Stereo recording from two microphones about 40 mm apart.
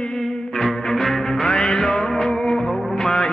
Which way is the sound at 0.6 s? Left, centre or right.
Centre.